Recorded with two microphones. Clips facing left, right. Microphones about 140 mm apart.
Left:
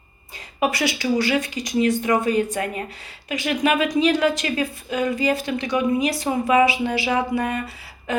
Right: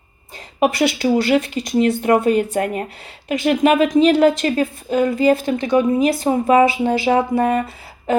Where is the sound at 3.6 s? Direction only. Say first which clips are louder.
Right 5 dB; 35° right (ahead or behind).